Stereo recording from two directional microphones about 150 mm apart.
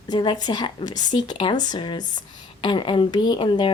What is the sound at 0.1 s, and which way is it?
Speech, 30° left (ahead or behind).